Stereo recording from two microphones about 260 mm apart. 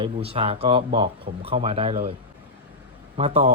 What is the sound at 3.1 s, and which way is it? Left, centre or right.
Speech, right.